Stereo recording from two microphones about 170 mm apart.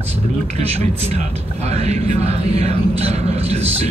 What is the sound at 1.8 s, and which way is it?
Speech, 40° right (ahead or behind).